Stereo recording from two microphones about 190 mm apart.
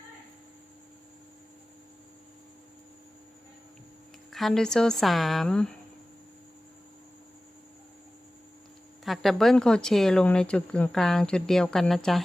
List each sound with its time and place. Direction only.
4.3 s speech: centre (ahead or behind)
9.0 s speech: centre (ahead or behind)